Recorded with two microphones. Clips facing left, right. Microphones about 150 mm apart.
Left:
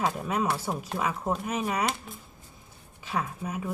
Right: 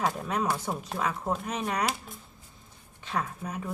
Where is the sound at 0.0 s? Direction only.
5° left (ahead or behind).